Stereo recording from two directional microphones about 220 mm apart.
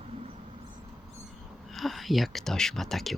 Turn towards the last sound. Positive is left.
turn(degrees=0)  # may be behind; listen again after turning